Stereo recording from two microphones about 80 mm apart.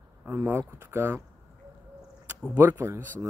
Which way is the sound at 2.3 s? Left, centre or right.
Right.